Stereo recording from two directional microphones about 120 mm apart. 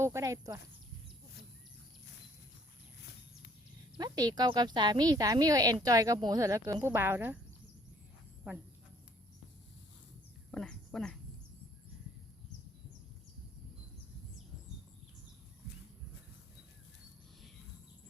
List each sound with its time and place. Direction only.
0.0 s speech: 25° right (ahead or behind)
3.9 s speech: 35° right (ahead or behind)
10.5 s a woman's voice: 5° left (ahead or behind)